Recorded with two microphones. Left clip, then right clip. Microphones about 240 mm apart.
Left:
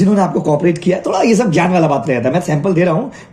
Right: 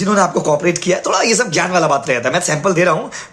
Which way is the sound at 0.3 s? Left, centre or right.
Right.